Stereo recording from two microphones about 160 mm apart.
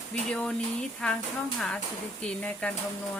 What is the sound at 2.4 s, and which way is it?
Speech, 10° left (ahead or behind).